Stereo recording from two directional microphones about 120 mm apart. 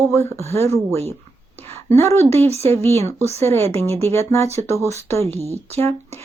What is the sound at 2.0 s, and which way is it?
Speech, 25° left (ahead or behind).